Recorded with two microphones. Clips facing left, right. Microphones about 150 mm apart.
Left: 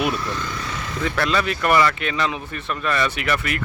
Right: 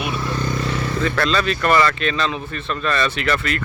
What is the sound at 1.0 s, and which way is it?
Speech, 15° left (ahead or behind).